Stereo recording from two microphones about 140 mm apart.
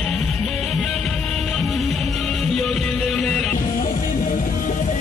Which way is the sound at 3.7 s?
75° left (ahead or behind).